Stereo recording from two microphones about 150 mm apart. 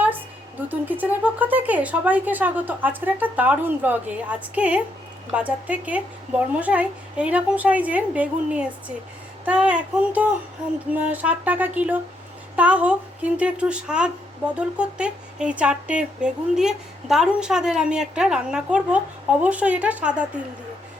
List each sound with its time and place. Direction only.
0.7 s speech: 10° right (ahead or behind)